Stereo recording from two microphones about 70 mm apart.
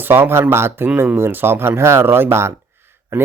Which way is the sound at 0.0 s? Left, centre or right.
Right.